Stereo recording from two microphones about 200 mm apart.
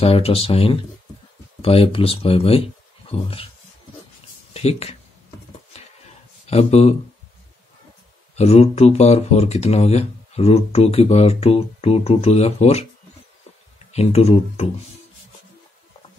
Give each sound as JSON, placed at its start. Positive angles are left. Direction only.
{"t": 0.0, "sound": "speech", "side_deg": 30}
{"t": 4.6, "sound": "speech", "side_deg": 30}
{"t": 6.5, "sound": "speech", "side_deg": 30}
{"t": 8.4, "sound": "speech", "side_deg": 30}
{"t": 13.9, "sound": "speech", "side_deg": 30}